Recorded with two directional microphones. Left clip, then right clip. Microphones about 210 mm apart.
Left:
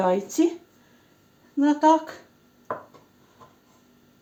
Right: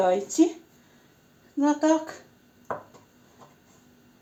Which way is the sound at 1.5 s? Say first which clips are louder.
Left 4 dB; 25° left (ahead or behind).